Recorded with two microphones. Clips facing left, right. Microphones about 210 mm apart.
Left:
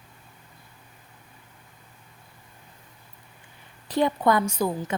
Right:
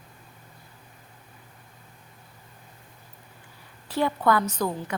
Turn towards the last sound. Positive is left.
turn(degrees=10)  # may be behind; listen again after turning